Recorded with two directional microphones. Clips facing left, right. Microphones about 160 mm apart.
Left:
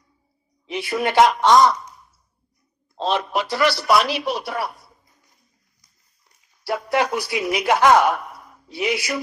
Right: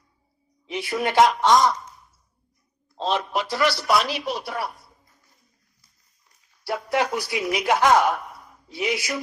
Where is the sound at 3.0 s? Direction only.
70° left (ahead or behind).